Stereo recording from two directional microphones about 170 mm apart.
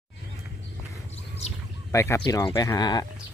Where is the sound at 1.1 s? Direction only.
40° left (ahead or behind).